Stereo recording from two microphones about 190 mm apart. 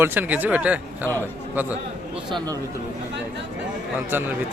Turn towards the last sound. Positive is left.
turn(degrees=-10)  # may be behind; listen again after turning